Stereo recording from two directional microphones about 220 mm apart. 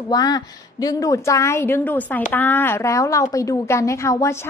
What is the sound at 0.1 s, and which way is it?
A woman's voice, 15° left (ahead or behind).